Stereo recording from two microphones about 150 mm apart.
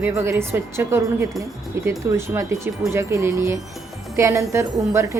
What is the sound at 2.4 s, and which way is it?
A woman's voice, 15° right (ahead or behind).